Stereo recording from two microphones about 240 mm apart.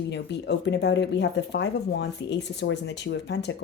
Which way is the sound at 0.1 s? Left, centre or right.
Left.